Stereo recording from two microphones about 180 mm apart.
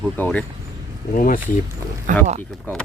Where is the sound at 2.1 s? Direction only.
45° right (ahead or behind).